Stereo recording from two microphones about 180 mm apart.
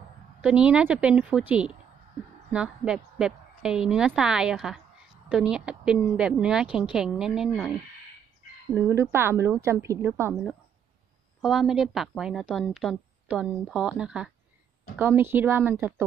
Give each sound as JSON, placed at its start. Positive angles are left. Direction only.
{"t": 0.4, "sound": "a woman's voice", "side_deg": -5}
{"t": 8.7, "sound": "a woman's voice", "side_deg": -15}
{"t": 11.4, "sound": "a woman's voice", "side_deg": 0}